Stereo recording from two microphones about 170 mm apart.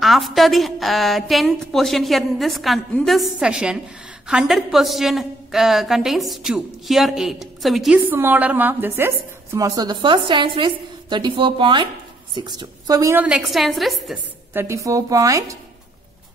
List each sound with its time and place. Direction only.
0.0 s a woman's voice: centre (ahead or behind)
8.0 s a woman's voice: 10° right (ahead or behind)
14.5 s a woman's voice: 15° right (ahead or behind)